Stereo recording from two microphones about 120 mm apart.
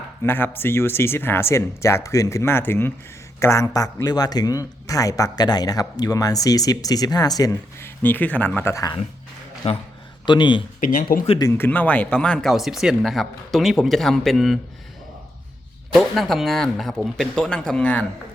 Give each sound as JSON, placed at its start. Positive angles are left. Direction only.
{"t": 0.2, "sound": "a man's voice", "side_deg": 20}
{"t": 7.8, "sound": "speech", "side_deg": 15}
{"t": 9.6, "sound": "a man's voice", "side_deg": 60}
{"t": 10.2, "sound": "a man's voice", "side_deg": 40}
{"t": 11.5, "sound": "speech", "side_deg": 15}
{"t": 15.9, "sound": "speech", "side_deg": 0}